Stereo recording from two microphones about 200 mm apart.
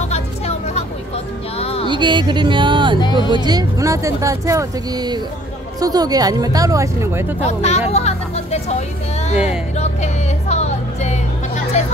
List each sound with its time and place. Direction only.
0.1 s a sound: 30° left (ahead or behind)
1.6 s music: 30° left (ahead or behind)
1.9 s speech: 25° right (ahead or behind)
3.0 s speech: 20° left (ahead or behind)
3.3 s speech: 20° right (ahead or behind)
7.3 s speech: 35° left (ahead or behind)
7.9 s a sound: 35° left (ahead or behind)
9.8 s music: 35° left (ahead or behind)
11.7 s a sound: 35° left (ahead or behind)